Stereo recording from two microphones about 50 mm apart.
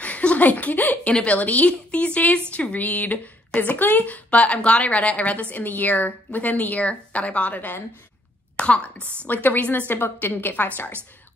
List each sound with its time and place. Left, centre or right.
0.0 s a woman's voice: left
9.3 s a woman's voice: left